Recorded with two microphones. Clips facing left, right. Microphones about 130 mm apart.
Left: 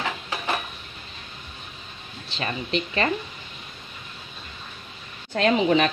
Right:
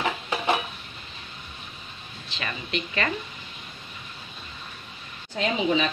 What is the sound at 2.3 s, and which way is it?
Speech, 30° left (ahead or behind).